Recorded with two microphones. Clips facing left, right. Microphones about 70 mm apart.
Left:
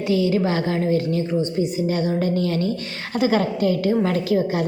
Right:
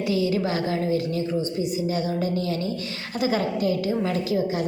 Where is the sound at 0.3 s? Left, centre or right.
Left.